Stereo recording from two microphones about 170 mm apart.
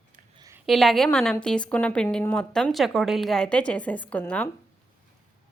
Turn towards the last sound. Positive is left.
turn(degrees=10)  # may be behind; listen again after turning